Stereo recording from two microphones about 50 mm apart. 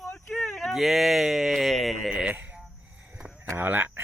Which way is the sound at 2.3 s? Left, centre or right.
Right.